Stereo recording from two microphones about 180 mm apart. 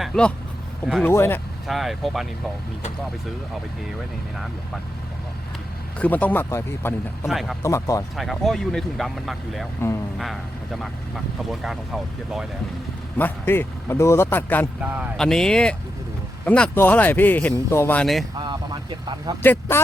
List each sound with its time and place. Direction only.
0.0 s speech: 5° left (ahead or behind)
1.6 s speech: centre (ahead or behind)
6.0 s speech: 10° left (ahead or behind)
7.3 s speech: centre (ahead or behind)
7.6 s speech: 15° left (ahead or behind)
8.1 s speech: centre (ahead or behind)
11.5 s speech: centre (ahead or behind)
13.1 s speech: 10° left (ahead or behind)
14.8 s speech: 10° right (ahead or behind)
15.2 s speech: 5° left (ahead or behind)
18.3 s vehicle: 25° right (ahead or behind)
19.4 s speech: 10° left (ahead or behind)